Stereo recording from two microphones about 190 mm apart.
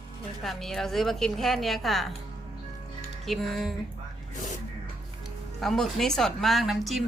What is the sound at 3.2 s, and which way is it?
Speech, centre (ahead or behind).